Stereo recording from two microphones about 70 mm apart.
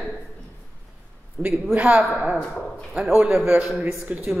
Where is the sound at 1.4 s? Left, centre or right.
Centre.